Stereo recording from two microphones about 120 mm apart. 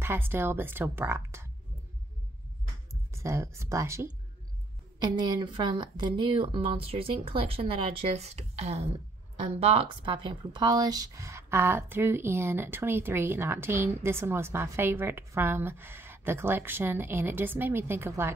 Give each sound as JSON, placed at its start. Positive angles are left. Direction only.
{"t": 0.0, "sound": "speech", "side_deg": -20}
{"t": 2.9, "sound": "speech", "side_deg": -25}
{"t": 4.9, "sound": "a woman's voice", "side_deg": -35}